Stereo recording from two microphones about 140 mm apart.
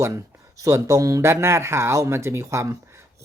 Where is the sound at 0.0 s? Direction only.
20° right (ahead or behind).